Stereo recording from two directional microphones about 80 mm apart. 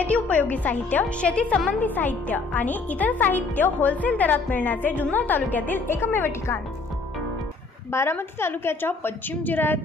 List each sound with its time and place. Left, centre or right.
0.0 s speech: centre
7.9 s speech: left